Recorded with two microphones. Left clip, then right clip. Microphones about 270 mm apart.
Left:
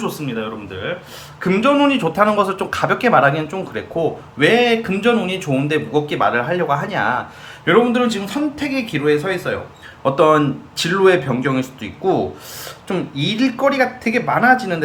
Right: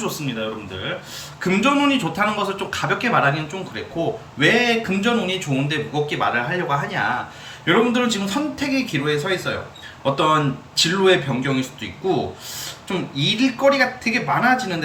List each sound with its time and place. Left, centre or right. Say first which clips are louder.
0.1 s a man's voice: left 2 dB; centre
7.6 s speech: left 4 dB; centre